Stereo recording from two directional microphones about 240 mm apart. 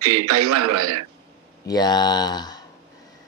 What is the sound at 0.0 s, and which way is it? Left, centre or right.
Speech, right.